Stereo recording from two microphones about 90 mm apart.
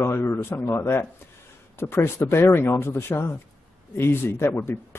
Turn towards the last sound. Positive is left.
turn(degrees=25)  # may be behind; listen again after turning